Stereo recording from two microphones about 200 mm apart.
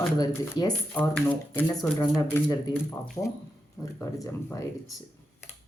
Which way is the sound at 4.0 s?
15° left (ahead or behind).